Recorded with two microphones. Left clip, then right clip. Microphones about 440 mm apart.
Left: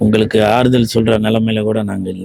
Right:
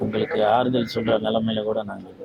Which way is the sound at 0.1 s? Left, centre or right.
Left.